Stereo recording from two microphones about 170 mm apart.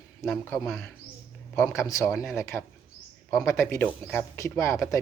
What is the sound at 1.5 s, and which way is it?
A man's voice, 15° left (ahead or behind).